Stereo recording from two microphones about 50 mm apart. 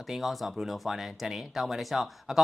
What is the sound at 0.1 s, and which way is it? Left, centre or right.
Speech, centre.